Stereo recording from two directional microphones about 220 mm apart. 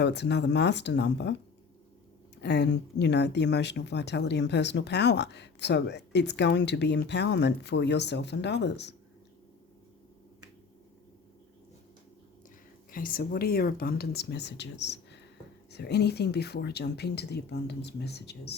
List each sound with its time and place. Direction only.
0.0 s speech: 50° left (ahead or behind)
12.9 s speech: 40° left (ahead or behind)